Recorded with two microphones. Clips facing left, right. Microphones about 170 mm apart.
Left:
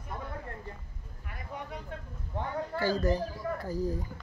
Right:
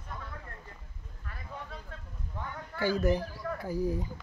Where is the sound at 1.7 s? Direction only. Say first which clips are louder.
Left 5 dB; 20° left (ahead or behind).